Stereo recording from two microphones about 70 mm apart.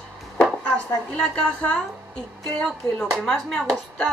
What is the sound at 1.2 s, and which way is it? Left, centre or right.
A woman's voice, centre.